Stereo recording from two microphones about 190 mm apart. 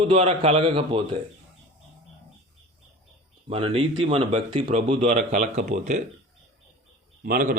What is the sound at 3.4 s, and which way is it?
Speech, 30° right (ahead or behind).